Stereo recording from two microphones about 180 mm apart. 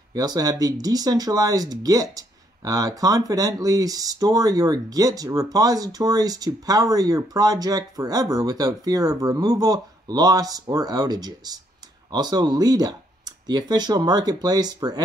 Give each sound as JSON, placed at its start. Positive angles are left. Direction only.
{"t": 0.1, "sound": "speech", "side_deg": -20}